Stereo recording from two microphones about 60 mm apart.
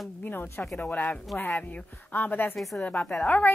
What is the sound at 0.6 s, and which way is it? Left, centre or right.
Speech, centre.